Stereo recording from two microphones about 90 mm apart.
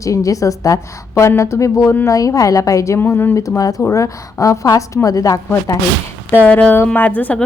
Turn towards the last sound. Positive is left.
turn(degrees=15)  # may be behind; listen again after turning